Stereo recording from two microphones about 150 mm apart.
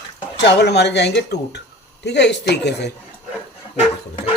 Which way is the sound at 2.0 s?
90° left.